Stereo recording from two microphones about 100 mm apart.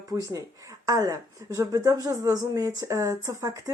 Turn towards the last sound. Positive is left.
turn(degrees=-35)  # may be behind; listen again after turning